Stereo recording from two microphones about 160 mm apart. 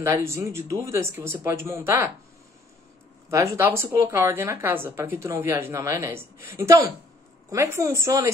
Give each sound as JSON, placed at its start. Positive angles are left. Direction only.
{"t": 0.0, "sound": "a woman's voice", "side_deg": -15}
{"t": 3.3, "sound": "a woman's voice", "side_deg": -20}